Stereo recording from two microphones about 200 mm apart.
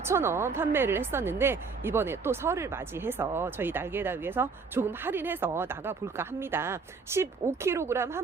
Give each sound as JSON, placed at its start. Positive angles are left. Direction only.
{"t": 0.0, "sound": "speech", "side_deg": -10}